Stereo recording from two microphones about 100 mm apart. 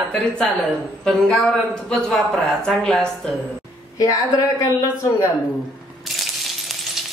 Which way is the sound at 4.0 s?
35° left (ahead or behind).